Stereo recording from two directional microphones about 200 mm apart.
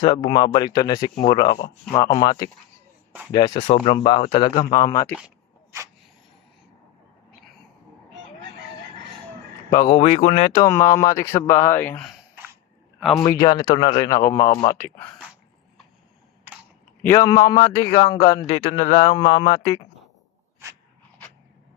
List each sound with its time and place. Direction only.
0.0 s a man's voice: 25° left (ahead or behind)
9.8 s speech: 30° left (ahead or behind)
10.6 s speech: 15° left (ahead or behind)
13.3 s a man's voice: 20° left (ahead or behind)
17.0 s a man's voice: 15° left (ahead or behind)
18.6 s speech: 35° left (ahead or behind)
19.1 s a man's voice: 25° left (ahead or behind)